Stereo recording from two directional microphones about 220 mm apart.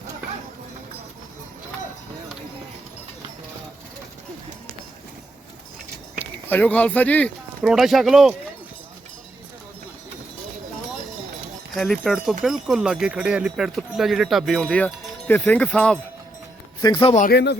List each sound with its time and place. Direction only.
6.1 s speech: 5° left (ahead or behind)
11.7 s speech: centre (ahead or behind)
16.8 s speech: 20° left (ahead or behind)
17.2 s speech: 50° left (ahead or behind)